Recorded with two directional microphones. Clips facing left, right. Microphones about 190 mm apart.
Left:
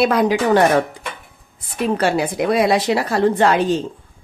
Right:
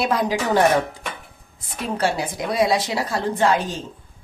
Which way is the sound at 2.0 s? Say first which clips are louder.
Left 2 dB; 65° left (ahead or behind).